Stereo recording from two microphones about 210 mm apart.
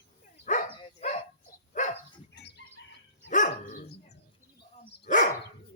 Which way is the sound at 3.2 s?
35° left (ahead or behind).